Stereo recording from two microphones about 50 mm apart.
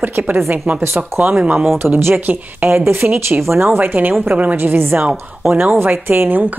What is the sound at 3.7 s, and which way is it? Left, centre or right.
Speech, right.